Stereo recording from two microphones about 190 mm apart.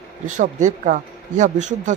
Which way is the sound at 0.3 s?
40° right (ahead or behind).